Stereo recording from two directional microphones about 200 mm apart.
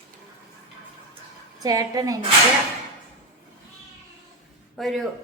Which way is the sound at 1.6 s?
20° right (ahead or behind).